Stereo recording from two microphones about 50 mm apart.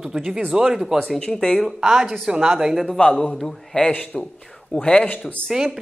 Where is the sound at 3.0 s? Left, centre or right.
Centre.